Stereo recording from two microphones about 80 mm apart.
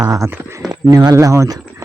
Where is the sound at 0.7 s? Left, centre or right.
Right.